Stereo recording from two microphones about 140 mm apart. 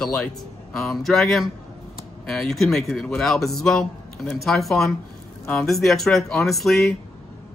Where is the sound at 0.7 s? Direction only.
Centre (ahead or behind).